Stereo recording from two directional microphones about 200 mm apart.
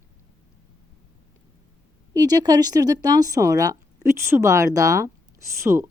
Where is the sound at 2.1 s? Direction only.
20° right (ahead or behind).